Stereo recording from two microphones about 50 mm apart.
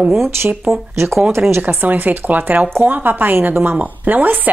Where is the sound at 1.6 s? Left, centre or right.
Right.